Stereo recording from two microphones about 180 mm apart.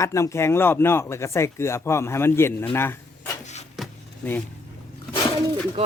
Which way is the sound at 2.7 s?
15° left (ahead or behind).